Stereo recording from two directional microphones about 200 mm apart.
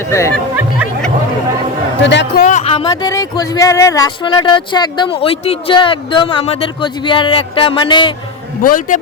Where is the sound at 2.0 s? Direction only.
60° left (ahead or behind).